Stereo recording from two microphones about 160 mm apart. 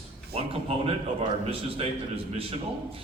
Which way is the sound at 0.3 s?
35° right (ahead or behind).